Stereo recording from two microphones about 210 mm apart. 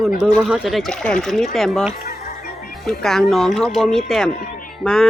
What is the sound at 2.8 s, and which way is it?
Speech, centre (ahead or behind).